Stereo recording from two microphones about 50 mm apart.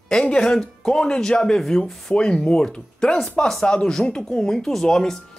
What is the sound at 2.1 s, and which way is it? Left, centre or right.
Speech, centre.